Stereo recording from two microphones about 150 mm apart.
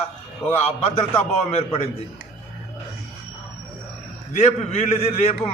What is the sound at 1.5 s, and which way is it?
Speech, 40° left (ahead or behind).